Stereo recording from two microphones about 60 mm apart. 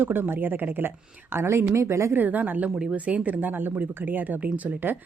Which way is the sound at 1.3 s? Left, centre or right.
Right.